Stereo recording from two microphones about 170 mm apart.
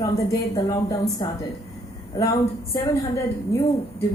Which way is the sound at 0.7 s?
20° left (ahead or behind).